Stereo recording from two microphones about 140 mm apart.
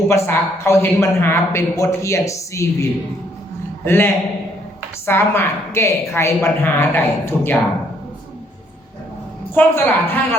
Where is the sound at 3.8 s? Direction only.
15° left (ahead or behind).